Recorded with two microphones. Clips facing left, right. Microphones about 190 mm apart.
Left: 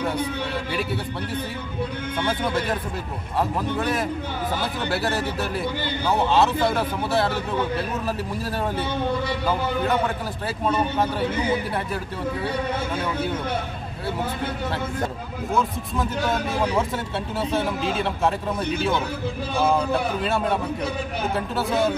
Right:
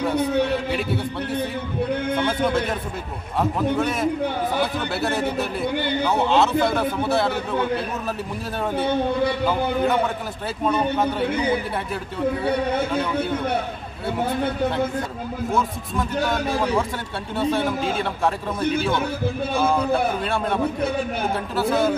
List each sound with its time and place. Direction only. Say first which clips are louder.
3.3 s speech: right 3 dB; centre (ahead or behind)
8.7 s speech: right 4 dB; 60° right (ahead or behind)
10.6 s speech: right 2 dB; centre (ahead or behind)
15.5 s speech: left 1 dB; centre (ahead or behind)
20.2 s speech: left 1 dB; 5° left (ahead or behind)
21.5 s speech: right 3 dB; centre (ahead or behind)